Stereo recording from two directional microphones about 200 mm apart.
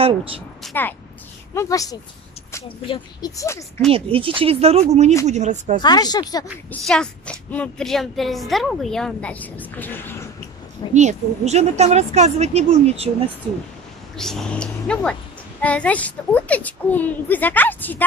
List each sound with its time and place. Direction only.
0.0 s speech: 25° right (ahead or behind)
1.5 s a woman's voice: 15° left (ahead or behind)
3.9 s a woman's voice: 25° right (ahead or behind)
5.8 s speech: 20° left (ahead or behind)
6.7 s speech: 5° left (ahead or behind)
10.9 s a woman's voice: 35° right (ahead or behind)
14.1 s a woman's voice: centre (ahead or behind)